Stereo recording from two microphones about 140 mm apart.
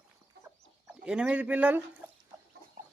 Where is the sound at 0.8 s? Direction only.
5° right (ahead or behind).